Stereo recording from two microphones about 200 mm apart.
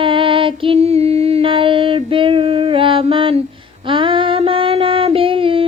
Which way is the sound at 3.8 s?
25° right (ahead or behind).